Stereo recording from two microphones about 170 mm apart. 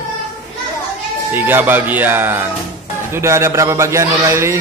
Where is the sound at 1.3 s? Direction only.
10° right (ahead or behind).